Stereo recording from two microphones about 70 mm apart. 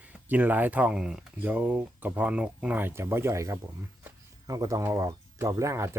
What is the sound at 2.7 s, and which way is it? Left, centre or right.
Speech, right.